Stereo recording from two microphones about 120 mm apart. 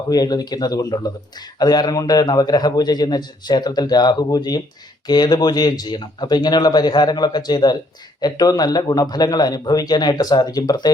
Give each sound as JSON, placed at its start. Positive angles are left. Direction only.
{"t": 0.1, "sound": "a man's voice", "side_deg": 30}